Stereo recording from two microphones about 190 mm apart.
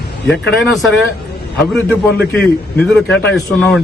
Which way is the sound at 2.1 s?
60° left (ahead or behind).